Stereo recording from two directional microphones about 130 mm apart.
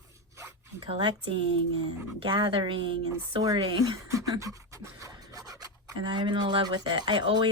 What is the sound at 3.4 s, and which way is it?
Speech, 30° right (ahead or behind).